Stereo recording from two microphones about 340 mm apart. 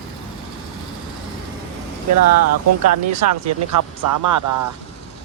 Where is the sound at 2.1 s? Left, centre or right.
Right.